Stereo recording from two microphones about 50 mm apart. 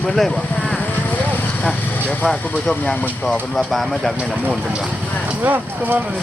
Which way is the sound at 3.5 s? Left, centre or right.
Centre.